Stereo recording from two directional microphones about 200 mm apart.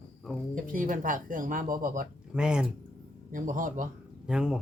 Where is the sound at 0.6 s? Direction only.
45° right (ahead or behind).